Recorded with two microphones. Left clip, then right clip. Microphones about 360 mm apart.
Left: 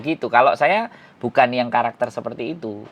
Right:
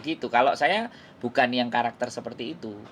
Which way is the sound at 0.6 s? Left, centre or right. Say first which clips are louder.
Left 6 dB; left.